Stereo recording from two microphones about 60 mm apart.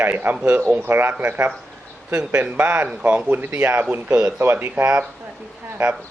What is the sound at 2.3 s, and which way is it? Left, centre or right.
Speech, right.